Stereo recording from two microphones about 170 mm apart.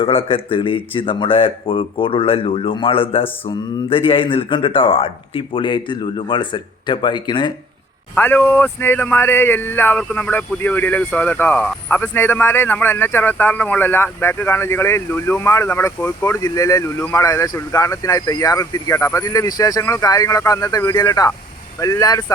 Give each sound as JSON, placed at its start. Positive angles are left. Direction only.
{"t": 0.0, "sound": "speech", "side_deg": 35}
{"t": 8.1, "sound": "speech", "side_deg": 10}